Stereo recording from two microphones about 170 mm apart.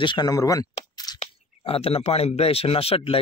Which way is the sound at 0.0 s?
25° left (ahead or behind).